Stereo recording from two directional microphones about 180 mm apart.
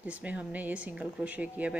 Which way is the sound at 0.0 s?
10° right (ahead or behind).